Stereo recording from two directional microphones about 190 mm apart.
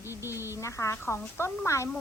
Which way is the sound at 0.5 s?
15° left (ahead or behind).